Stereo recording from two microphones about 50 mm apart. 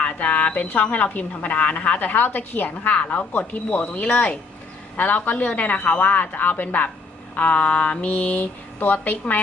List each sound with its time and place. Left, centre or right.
0.0 s a woman's voice: left
2.9 s mantra: left
3.3 s a woman's voice: left
7.3 s mantra: left
8.1 s a woman's voice: left